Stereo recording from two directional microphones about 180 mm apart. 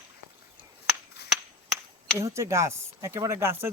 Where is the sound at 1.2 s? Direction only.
65° left (ahead or behind).